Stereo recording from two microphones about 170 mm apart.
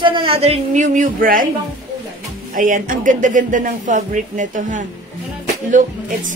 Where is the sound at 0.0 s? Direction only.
30° right (ahead or behind); by 1.5 s 55° right (ahead or behind).